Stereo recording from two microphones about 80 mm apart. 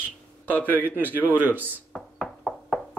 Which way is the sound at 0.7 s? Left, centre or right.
Right.